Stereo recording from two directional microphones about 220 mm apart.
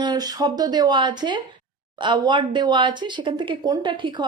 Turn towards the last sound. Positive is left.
turn(degrees=-20)  # may be behind; listen again after turning